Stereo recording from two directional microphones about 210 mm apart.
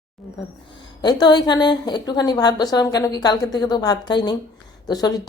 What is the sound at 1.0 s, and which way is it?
A woman's voice, 20° left (ahead or behind).